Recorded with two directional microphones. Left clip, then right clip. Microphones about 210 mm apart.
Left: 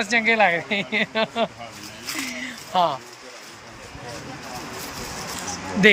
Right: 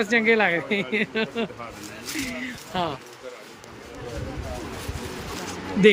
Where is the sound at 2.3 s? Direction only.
5° right (ahead or behind).